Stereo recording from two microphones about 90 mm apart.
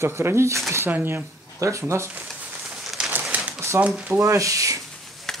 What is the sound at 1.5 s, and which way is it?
Speech, 35° right (ahead or behind).